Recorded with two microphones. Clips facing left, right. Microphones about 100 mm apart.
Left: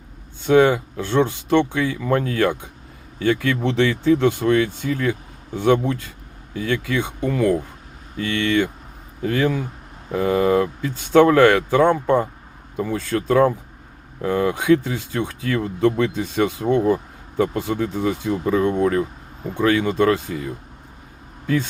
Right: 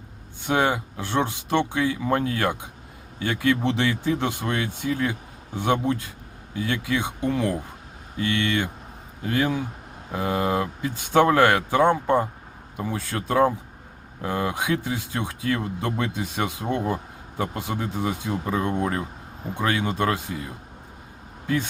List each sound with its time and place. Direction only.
0.4 s speech: 15° right (ahead or behind)
21.4 s speech: 15° right (ahead or behind)